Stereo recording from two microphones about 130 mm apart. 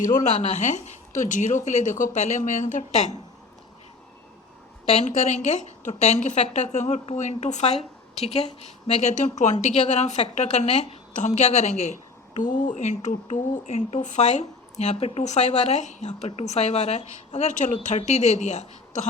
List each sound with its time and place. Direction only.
0.0 s speech: 65° left (ahead or behind)
4.9 s speech: 60° left (ahead or behind)
12.4 s speech: 80° left; by 18.7 s 65° left (ahead or behind)